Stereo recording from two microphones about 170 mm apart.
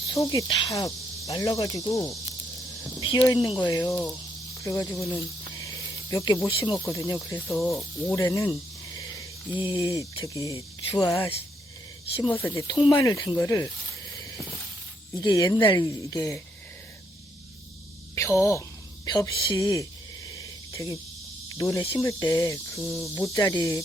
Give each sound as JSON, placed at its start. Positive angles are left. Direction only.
{"t": 0.1, "sound": "speech", "side_deg": 20}
{"t": 3.1, "sound": "speech", "side_deg": 25}
{"t": 4.6, "sound": "snake", "side_deg": 20}
{"t": 6.7, "sound": "speech", "side_deg": 15}
{"t": 7.7, "sound": "speech", "side_deg": 0}
{"t": 8.1, "sound": "speech", "side_deg": 20}
{"t": 12.3, "sound": "speech", "side_deg": 15}
{"t": 18.1, "sound": "speech", "side_deg": 15}
{"t": 19.0, "sound": "a sound", "side_deg": 25}
{"t": 21.6, "sound": "speech", "side_deg": 20}